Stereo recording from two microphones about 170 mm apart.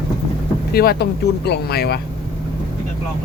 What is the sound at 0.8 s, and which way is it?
Speech, 70° left (ahead or behind).